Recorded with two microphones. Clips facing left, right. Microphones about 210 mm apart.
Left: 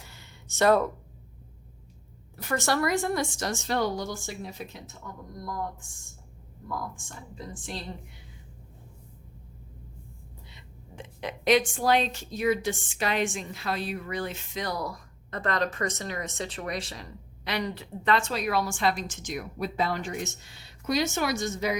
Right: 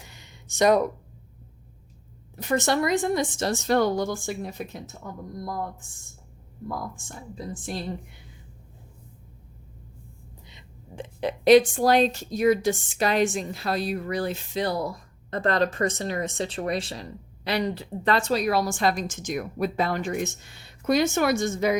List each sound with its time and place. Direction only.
0.0 s a sound: 15° right (ahead or behind)
2.3 s a woman's voice: 20° right (ahead or behind)
3.5 s speech: 45° right (ahead or behind)
7.3 s speech: 45° right (ahead or behind)
10.9 s a woman's voice: 35° right (ahead or behind); by 21.8 s 50° right (ahead or behind)